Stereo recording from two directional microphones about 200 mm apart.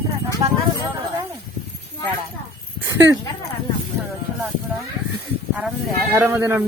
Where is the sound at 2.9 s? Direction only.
15° right (ahead or behind).